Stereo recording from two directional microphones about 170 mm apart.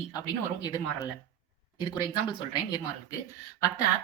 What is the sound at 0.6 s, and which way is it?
Speech, 20° left (ahead or behind).